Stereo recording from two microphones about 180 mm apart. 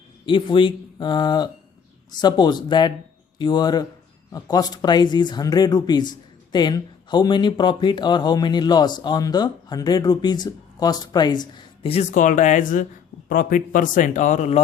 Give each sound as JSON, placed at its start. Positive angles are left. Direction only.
{"t": 0.3, "sound": "speech", "side_deg": 30}